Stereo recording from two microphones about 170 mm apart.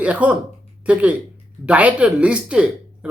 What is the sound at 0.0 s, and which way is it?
Speech, 5° right (ahead or behind).